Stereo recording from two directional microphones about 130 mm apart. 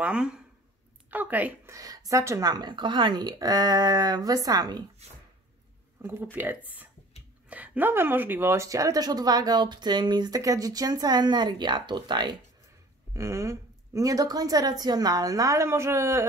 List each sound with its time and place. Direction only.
0.0 s a woman's voice: 5° right (ahead or behind)
1.8 s a woman's voice: 25° right (ahead or behind)
6.3 s a woman's voice: 15° right (ahead or behind); by 12.4 s 35° right (ahead or behind)
13.1 s a woman's voice: 25° right (ahead or behind)